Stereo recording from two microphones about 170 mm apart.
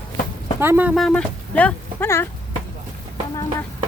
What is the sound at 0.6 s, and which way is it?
Speech, 10° right (ahead or behind).